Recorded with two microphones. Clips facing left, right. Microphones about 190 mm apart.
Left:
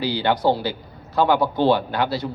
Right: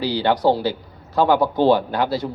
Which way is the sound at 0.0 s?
35° right (ahead or behind).